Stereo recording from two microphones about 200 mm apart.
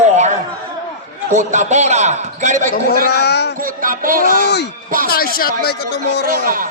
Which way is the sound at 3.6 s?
45° right (ahead or behind).